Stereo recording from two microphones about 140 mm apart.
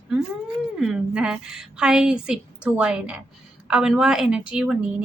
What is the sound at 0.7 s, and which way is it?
A woman's voice, centre (ahead or behind).